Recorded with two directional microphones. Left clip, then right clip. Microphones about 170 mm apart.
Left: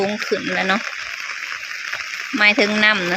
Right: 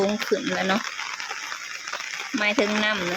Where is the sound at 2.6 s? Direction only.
Centre (ahead or behind).